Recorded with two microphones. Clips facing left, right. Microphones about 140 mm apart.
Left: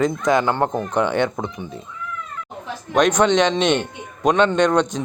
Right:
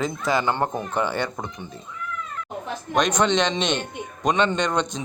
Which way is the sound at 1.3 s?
20° left (ahead or behind).